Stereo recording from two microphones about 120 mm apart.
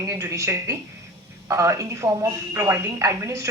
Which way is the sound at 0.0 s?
25° right (ahead or behind).